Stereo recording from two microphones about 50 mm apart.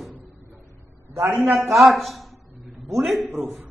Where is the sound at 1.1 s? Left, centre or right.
Right.